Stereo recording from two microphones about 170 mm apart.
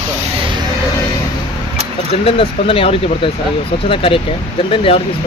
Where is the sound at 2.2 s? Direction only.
30° left (ahead or behind).